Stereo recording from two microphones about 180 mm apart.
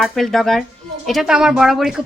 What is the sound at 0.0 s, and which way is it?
Speech, centre (ahead or behind).